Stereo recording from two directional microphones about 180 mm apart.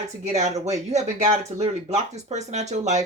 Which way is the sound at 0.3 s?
40° right (ahead or behind).